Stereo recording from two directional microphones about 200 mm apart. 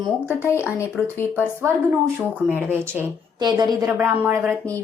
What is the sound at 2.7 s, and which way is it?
A woman's voice, 10° right (ahead or behind).